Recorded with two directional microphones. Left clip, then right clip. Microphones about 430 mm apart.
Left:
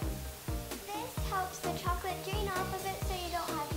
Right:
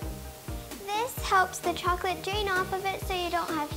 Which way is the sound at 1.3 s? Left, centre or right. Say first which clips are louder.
Right 12 dB; right.